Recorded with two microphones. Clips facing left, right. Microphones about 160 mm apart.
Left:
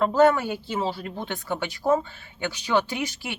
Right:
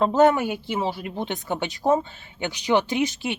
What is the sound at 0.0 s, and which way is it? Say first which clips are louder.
Speech: right 1 dB; 20° right (ahead or behind).